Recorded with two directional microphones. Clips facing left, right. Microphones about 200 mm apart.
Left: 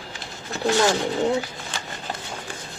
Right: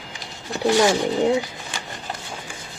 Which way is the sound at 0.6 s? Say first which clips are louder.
Right 3 dB; 15° right (ahead or behind).